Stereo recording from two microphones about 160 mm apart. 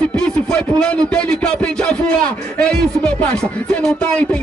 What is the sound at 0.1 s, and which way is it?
A man's voice, 5° left (ahead or behind).